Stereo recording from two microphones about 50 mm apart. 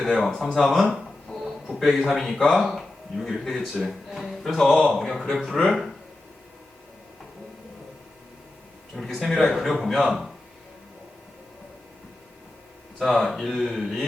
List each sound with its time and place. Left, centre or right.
0.0 s speech: centre
1.3 s music: centre
1.7 s speech: centre
5.6 s speech: centre
9.0 s speech: centre
13.0 s speech: centre